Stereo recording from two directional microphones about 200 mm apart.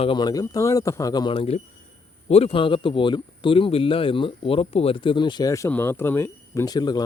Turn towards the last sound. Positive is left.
turn(degrees=20)  # may be behind; listen again after turning